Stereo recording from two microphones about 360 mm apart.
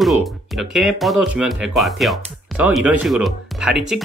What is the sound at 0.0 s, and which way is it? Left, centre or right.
Speech, centre.